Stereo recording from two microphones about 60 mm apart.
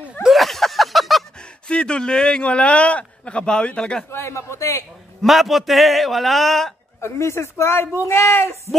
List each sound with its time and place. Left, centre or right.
0.3 s a sound: centre
1.7 s a man's voice: centre
4.1 s speech: left
5.2 s a man's voice: centre
7.0 s speech: left